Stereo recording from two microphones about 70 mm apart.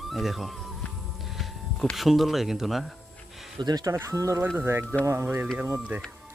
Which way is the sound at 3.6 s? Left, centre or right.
Right.